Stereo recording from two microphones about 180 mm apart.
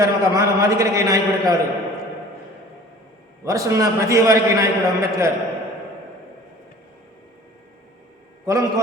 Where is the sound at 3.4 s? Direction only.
15° right (ahead or behind).